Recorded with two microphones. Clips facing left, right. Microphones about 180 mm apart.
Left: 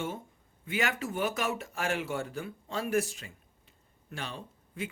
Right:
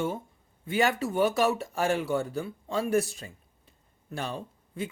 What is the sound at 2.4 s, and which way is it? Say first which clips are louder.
Speech: right 5 dB; 30° right (ahead or behind).